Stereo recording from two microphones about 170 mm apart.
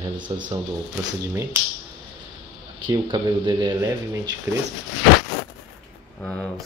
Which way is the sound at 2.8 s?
30° right (ahead or behind).